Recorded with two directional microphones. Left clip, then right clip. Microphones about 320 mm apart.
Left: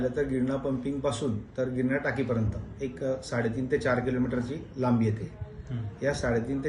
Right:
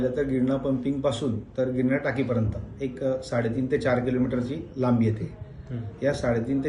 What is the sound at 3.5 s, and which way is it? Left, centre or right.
Speech, right.